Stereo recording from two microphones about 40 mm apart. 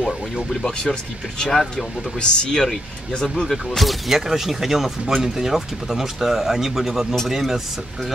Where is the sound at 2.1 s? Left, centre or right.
Left.